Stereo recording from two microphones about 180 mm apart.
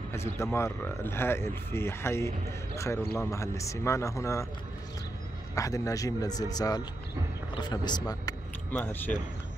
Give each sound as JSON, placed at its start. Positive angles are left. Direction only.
{"t": 0.1, "sound": "speech", "side_deg": 15}
{"t": 5.5, "sound": "speech", "side_deg": 20}
{"t": 8.6, "sound": "speech", "side_deg": 10}